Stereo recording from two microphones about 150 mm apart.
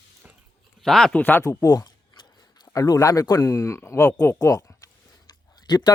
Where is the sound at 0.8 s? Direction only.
Centre (ahead or behind); by 5.8 s 25° left (ahead or behind).